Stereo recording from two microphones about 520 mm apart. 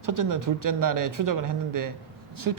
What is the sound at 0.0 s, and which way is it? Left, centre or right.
A woman's voice, right.